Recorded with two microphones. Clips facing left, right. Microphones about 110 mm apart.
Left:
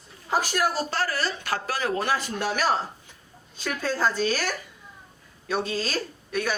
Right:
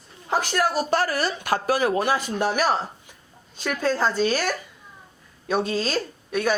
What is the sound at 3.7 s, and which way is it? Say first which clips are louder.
Speech: right 3 dB; 15° right (ahead or behind).